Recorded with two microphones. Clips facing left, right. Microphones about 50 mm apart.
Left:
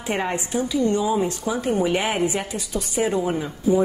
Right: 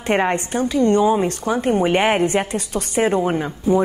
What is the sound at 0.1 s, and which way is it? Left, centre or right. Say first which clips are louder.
A woman's voice: right 6 dB; right.